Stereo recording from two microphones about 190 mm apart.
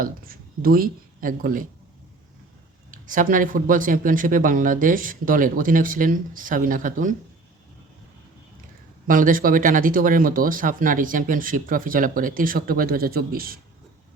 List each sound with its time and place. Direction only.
0.0 s speech: 50° right (ahead or behind)
2.9 s speech: 45° right (ahead or behind)
9.0 s speech: 45° right (ahead or behind)